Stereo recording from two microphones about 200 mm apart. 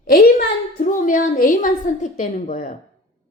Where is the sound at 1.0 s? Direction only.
40° left (ahead or behind).